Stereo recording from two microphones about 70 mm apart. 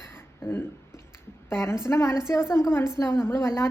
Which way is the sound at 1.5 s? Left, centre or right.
Left.